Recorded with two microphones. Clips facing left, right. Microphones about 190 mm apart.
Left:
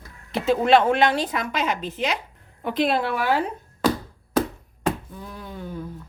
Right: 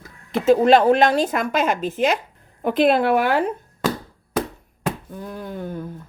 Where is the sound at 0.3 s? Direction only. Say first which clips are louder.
Right 4 dB; 45° right (ahead or behind).